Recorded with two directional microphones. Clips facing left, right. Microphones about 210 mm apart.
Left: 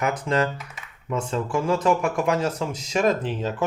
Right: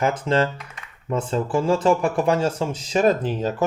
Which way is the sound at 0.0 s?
30° right (ahead or behind).